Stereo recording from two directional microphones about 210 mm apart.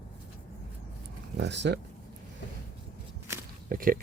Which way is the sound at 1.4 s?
55° right (ahead or behind).